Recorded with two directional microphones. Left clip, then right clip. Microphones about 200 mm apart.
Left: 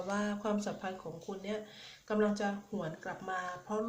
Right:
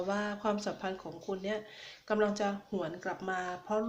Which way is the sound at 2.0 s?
30° right (ahead or behind).